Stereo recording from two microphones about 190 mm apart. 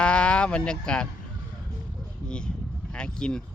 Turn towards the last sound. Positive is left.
turn(degrees=5)  # may be behind; listen again after turning